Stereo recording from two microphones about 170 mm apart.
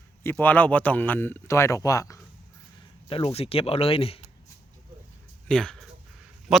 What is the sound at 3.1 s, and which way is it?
Speech, 35° left (ahead or behind).